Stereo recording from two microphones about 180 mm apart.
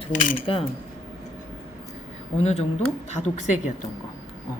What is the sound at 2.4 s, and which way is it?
A woman's voice, 35° left (ahead or behind).